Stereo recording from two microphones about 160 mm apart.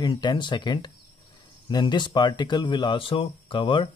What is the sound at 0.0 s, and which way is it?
Speech, 25° left (ahead or behind).